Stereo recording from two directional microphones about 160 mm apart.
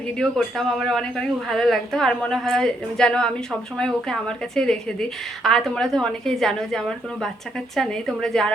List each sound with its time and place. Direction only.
0.2 s a woman's voice: centre (ahead or behind)